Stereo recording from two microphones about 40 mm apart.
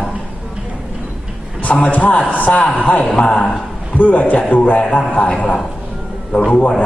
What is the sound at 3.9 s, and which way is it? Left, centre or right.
A man's voice, left.